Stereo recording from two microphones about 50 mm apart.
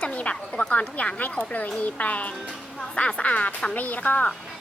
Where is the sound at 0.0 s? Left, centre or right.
Left.